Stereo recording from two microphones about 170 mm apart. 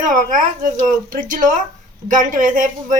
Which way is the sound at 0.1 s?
50° right (ahead or behind).